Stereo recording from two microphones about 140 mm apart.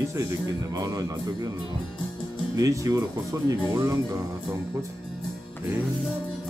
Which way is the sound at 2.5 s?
25° right (ahead or behind).